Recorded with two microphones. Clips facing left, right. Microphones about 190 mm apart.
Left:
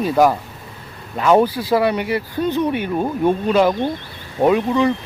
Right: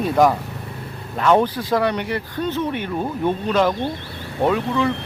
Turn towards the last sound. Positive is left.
turn(degrees=15)  # may be behind; listen again after turning